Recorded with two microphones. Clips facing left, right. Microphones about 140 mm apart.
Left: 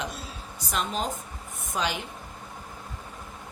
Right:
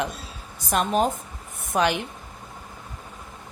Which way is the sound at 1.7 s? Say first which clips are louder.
Right 7 dB; 60° right (ahead or behind).